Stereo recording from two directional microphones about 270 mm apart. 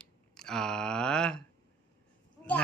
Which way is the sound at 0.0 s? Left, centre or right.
Centre.